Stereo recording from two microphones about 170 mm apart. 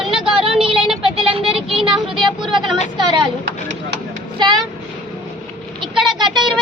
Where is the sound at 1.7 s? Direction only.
30° right (ahead or behind).